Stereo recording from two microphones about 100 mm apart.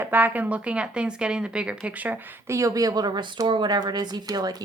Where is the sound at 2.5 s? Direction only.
35° right (ahead or behind).